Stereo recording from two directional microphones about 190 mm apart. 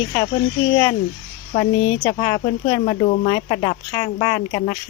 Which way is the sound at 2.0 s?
20° left (ahead or behind).